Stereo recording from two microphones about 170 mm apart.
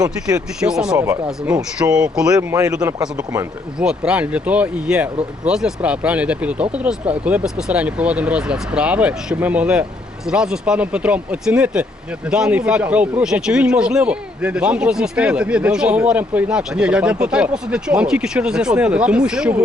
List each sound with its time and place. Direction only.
0.6 s speech: 5° right (ahead or behind)
0.9 s speech: 15° right (ahead or behind)
2.3 s speech: 20° right (ahead or behind)
3.8 s speech: 5° right (ahead or behind)